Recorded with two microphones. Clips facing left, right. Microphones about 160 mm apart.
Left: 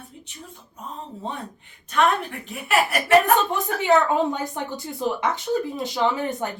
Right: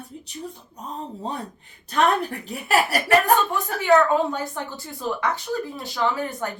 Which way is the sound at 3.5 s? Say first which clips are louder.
Right 1 dB; 20° left (ahead or behind).